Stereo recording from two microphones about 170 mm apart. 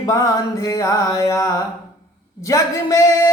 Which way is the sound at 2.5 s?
20° left (ahead or behind).